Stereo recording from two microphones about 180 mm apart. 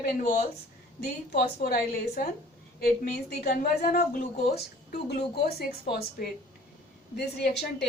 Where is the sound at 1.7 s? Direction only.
55° left (ahead or behind).